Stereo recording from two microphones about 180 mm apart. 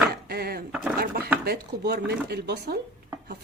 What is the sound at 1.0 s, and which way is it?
Speech, 60° right (ahead or behind).